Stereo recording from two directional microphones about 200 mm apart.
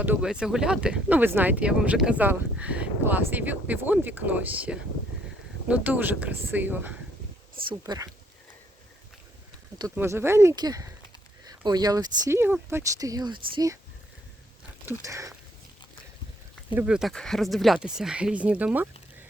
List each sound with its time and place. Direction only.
0.0 s speech: 5° right (ahead or behind)
9.9 s speech: 10° right (ahead or behind)
14.8 s a sound: 15° right (ahead or behind)
16.7 s speech: 5° right (ahead or behind)